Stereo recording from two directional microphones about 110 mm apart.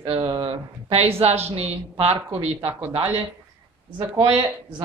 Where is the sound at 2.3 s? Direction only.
55° right (ahead or behind).